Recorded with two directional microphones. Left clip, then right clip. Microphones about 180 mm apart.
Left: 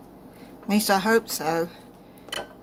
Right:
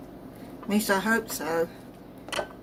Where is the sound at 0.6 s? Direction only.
45° left (ahead or behind).